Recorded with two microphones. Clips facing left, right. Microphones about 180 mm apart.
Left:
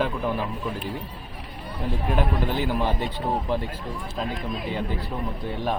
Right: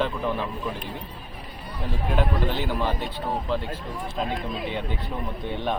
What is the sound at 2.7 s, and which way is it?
Speech, 15° left (ahead or behind).